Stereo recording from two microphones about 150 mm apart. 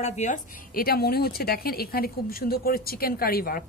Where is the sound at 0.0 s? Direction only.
50° left (ahead or behind).